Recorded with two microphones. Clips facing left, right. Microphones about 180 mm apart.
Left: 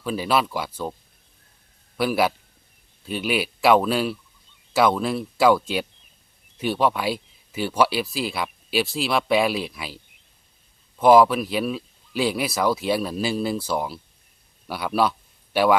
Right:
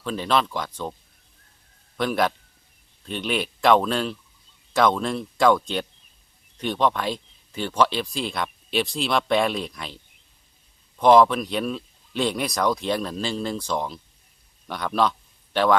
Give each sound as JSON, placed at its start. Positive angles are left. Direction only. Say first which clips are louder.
{"t": 0.0, "sound": "speech", "louder": "left 1 dB", "side_deg": 10}
{"t": 2.0, "sound": "speech", "louder": "left 2 dB", "side_deg": 5}